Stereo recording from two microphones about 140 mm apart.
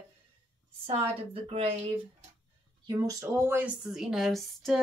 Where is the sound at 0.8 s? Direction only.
40° right (ahead or behind).